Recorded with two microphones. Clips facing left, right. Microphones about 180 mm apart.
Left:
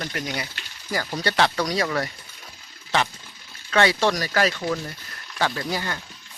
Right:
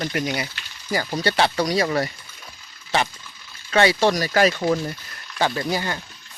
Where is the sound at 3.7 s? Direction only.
10° right (ahead or behind).